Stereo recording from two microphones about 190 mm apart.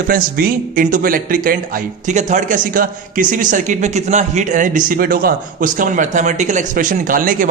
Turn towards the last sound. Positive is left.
turn(degrees=-45)  # may be behind; listen again after turning